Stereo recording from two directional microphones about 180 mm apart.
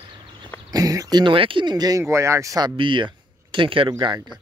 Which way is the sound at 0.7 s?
20° right (ahead or behind).